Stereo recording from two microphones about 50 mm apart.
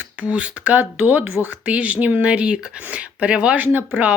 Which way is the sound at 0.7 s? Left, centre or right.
Right.